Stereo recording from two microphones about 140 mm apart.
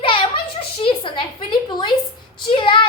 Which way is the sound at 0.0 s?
40° left (ahead or behind).